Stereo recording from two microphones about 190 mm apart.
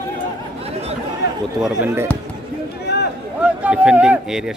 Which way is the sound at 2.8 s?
60° left (ahead or behind).